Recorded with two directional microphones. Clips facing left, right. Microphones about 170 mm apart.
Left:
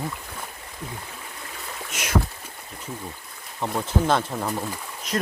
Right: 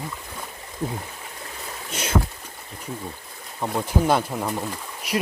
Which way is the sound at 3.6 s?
10° right (ahead or behind).